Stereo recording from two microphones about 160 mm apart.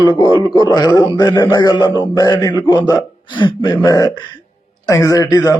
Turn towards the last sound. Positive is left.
turn(degrees=25)  # may be behind; listen again after turning